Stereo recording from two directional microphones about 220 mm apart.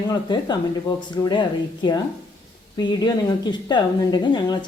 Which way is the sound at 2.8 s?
20° left (ahead or behind).